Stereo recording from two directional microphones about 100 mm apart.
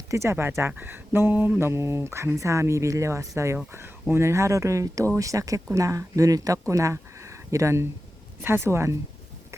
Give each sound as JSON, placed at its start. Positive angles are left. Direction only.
{"t": 0.1, "sound": "speech", "side_deg": -30}